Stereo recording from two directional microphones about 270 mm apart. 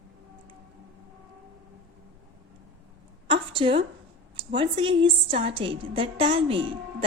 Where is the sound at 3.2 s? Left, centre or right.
Centre.